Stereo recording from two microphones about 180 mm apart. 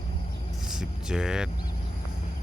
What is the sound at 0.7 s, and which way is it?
Vehicle, 5° right (ahead or behind).